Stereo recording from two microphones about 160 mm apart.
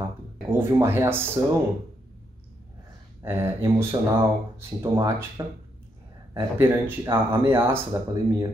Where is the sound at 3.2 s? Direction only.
15° right (ahead or behind).